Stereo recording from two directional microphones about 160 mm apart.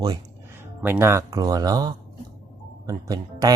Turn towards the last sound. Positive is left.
turn(degrees=-25)  # may be behind; listen again after turning